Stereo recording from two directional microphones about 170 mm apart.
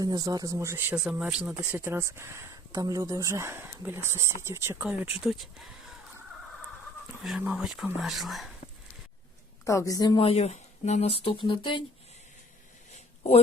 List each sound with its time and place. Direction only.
0.0 s speech: 20° right (ahead or behind)
0.9 s speech: 5° right (ahead or behind)
5.2 s speech: centre (ahead or behind)
7.2 s speech: 5° right (ahead or behind)
9.6 s a woman's voice: 20° left (ahead or behind)
10.2 s speech: 35° left (ahead or behind)
12.9 s a sound: 40° left (ahead or behind)